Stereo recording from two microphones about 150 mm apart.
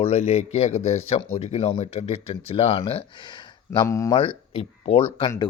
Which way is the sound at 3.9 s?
20° left (ahead or behind).